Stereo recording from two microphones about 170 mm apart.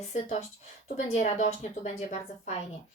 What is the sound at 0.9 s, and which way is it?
A woman's voice, 45° left (ahead or behind).